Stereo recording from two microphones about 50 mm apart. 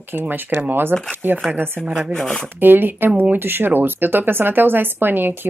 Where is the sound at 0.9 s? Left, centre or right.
Right.